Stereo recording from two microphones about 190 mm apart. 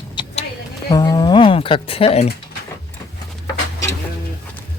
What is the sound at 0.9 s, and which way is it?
Speech, 20° left (ahead or behind).